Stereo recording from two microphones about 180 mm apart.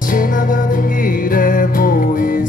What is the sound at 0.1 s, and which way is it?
Music, 50° left (ahead or behind).